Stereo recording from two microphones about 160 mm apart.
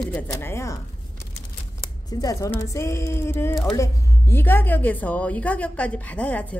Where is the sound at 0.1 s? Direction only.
15° left (ahead or behind).